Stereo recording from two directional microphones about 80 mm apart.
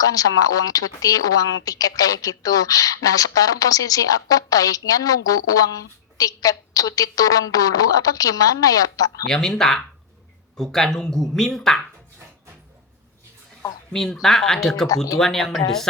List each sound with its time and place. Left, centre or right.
0.0 s speech: left
9.3 s speech: centre
13.9 s speech: centre
14.8 s speech: left
15.2 s speech: centre